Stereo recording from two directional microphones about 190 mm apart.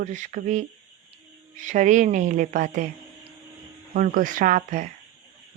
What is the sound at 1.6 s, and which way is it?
A woman's voice, 40° right (ahead or behind).